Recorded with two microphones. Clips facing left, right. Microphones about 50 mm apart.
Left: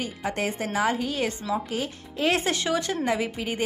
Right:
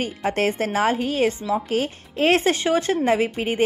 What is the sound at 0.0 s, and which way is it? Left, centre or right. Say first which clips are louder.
A woman's voice: right 6 dB; right.